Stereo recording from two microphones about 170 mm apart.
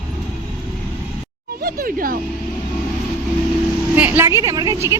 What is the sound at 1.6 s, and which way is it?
Speech, 60° right (ahead or behind).